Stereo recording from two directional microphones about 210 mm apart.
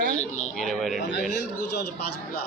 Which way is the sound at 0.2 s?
85° left.